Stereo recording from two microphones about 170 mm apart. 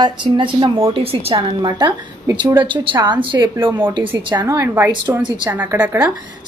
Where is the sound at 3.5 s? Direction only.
15° right (ahead or behind).